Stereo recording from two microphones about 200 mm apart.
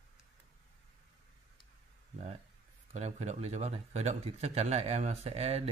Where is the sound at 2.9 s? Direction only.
30° right (ahead or behind).